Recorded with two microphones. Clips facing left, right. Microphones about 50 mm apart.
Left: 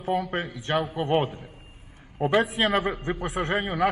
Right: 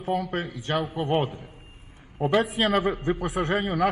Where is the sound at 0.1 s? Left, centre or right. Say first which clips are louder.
Left 1 dB; left.